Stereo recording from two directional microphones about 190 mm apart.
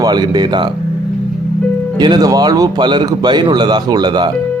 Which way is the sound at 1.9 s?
25° right (ahead or behind).